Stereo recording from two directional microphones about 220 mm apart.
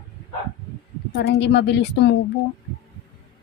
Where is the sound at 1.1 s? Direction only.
50° left (ahead or behind).